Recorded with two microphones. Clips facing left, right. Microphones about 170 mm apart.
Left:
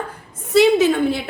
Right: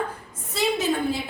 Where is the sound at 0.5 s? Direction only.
80° left.